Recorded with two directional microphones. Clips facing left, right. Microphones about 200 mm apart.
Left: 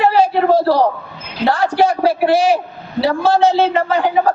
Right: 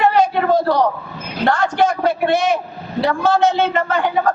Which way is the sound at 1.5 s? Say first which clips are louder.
Left 2 dB; 35° left (ahead or behind).